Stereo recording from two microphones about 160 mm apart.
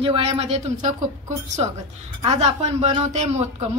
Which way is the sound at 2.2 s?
40° right (ahead or behind).